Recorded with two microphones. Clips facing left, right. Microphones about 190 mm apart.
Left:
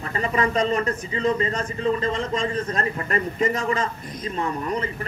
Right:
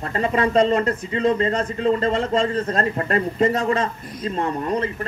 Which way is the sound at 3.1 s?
35° right (ahead or behind).